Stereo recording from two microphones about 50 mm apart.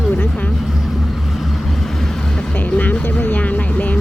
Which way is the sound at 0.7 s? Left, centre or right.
Centre.